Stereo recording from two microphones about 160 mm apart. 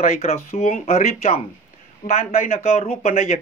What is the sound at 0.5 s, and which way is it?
Speech, 45° left (ahead or behind).